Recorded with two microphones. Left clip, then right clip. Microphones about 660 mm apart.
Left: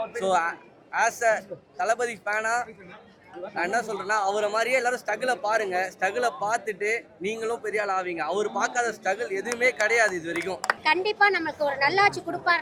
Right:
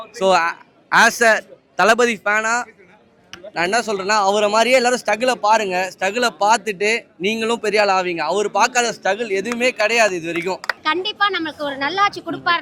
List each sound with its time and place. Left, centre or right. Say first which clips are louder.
0.2 s a man's voice: right 9 dB; right
11.1 s a woman's voice: right 3 dB; right